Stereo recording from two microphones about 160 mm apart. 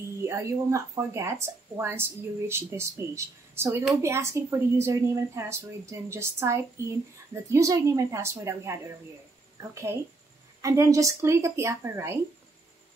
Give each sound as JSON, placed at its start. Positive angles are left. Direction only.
{"t": 0.2, "sound": "speech", "side_deg": -20}